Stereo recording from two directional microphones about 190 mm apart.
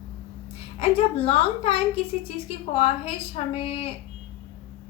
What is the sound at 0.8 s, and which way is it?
A woman's voice, 30° left (ahead or behind).